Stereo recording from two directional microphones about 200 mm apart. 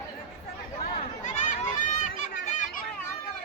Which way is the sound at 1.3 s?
35° left (ahead or behind).